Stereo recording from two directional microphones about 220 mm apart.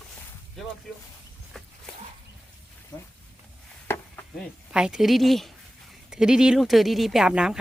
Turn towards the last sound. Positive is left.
turn(degrees=-5)  # may be behind; listen again after turning